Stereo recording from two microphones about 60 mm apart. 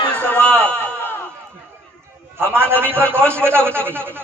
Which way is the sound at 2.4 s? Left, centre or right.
Right.